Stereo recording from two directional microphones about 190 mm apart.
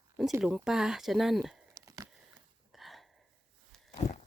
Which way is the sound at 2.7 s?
Centre (ahead or behind).